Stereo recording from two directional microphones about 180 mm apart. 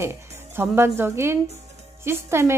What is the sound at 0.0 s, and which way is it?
A woman's voice, 15° right (ahead or behind).